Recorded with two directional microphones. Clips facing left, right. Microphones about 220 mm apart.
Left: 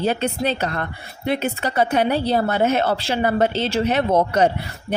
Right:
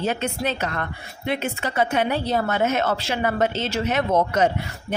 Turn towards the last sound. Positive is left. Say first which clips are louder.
# left 2 dB
turn(degrees=35)  # may be behind; listen again after turning